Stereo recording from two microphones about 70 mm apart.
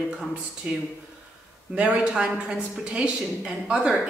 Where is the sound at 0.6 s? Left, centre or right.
Centre.